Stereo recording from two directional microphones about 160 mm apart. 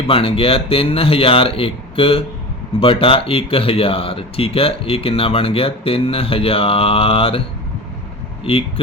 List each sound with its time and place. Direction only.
0.1 s speech: 35° left (ahead or behind)
8.5 s speech: 35° left (ahead or behind)